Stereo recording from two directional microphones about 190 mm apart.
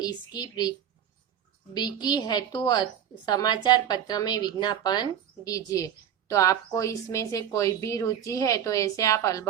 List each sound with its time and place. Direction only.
0.0 s a woman's voice: 20° left (ahead or behind)
1.7 s a woman's voice: 20° left (ahead or behind)